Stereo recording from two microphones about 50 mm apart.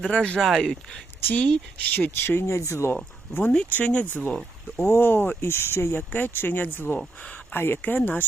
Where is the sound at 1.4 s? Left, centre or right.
Left.